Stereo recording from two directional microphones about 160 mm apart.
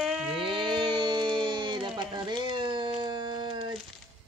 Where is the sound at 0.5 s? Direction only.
30° right (ahead or behind).